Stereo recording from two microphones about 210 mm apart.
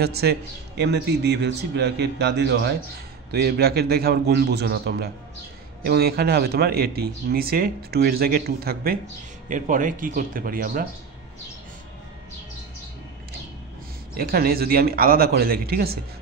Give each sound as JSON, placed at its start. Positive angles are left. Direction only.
{"t": 0.0, "sound": "speech", "side_deg": -50}
{"t": 14.1, "sound": "speech", "side_deg": -45}